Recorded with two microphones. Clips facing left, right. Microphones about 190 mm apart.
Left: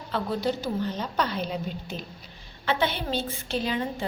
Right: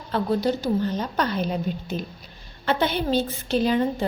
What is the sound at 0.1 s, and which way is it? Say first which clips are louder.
A woman's voice: right 5 dB; 40° right (ahead or behind).